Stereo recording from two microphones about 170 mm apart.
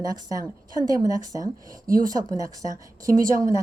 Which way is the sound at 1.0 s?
20° right (ahead or behind).